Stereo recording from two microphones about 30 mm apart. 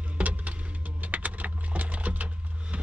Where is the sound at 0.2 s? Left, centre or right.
Right.